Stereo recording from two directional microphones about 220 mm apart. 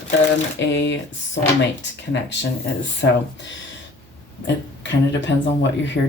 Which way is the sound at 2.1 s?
55° left (ahead or behind).